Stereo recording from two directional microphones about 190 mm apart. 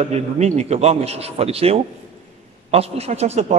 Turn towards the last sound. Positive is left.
turn(degrees=-35)  # may be behind; listen again after turning